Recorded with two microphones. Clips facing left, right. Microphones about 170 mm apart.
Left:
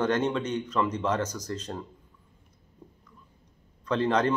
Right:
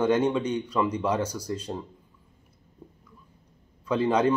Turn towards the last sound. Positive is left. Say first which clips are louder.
# right 2 dB
turn(degrees=-10)  # may be behind; listen again after turning